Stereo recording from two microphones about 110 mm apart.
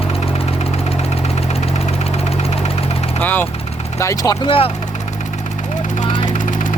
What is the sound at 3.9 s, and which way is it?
Speech, 30° left (ahead or behind).